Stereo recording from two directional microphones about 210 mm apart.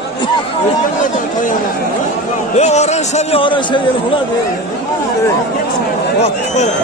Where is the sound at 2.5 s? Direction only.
30° left (ahead or behind).